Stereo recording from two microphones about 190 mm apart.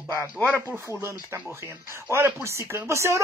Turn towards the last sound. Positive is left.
turn(degrees=-15)  # may be behind; listen again after turning